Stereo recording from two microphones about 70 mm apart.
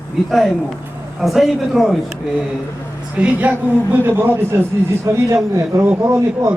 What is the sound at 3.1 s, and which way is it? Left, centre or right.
A woman's voice, centre.